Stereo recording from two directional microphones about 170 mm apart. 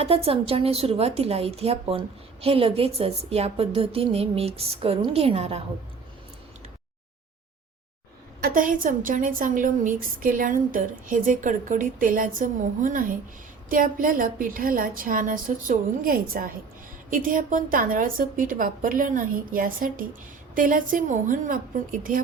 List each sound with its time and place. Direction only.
0.0 s a woman's voice: 35° right (ahead or behind)
8.4 s a woman's voice: 55° right (ahead or behind)